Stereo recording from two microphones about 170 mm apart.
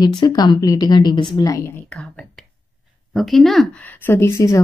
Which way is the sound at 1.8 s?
5° left (ahead or behind).